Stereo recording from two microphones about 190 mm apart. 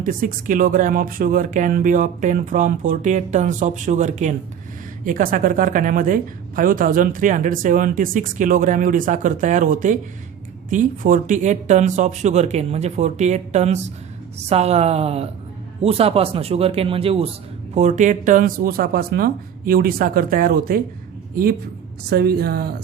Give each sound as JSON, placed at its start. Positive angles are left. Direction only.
{"t": 0.0, "sound": "speech", "side_deg": -45}
{"t": 22.1, "sound": "speech", "side_deg": -55}